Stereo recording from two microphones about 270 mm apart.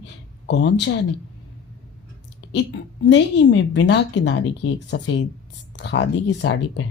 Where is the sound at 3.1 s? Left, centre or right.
Left.